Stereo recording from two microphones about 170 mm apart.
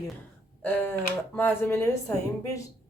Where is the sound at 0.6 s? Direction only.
10° left (ahead or behind).